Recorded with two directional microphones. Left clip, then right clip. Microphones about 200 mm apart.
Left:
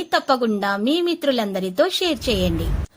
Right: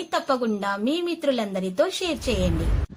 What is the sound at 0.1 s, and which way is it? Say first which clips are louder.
A woman's voice: left 5 dB; 30° left (ahead or behind).